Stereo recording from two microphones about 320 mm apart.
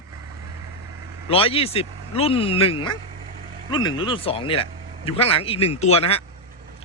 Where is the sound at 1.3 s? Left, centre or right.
Centre.